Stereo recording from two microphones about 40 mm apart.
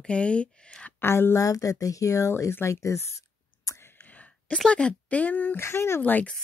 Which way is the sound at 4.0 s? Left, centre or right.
Left.